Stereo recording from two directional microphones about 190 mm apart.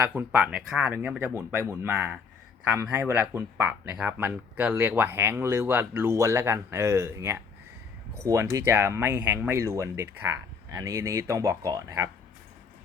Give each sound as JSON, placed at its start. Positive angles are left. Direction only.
{"t": 0.0, "sound": "speech", "side_deg": -10}